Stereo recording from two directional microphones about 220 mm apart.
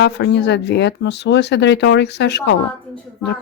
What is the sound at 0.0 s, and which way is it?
Speech, 50° left (ahead or behind).